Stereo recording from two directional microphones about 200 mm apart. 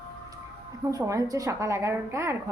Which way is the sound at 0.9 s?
15° right (ahead or behind).